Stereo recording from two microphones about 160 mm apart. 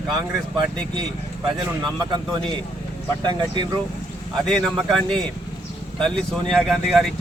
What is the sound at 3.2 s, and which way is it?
Speech, 30° right (ahead or behind).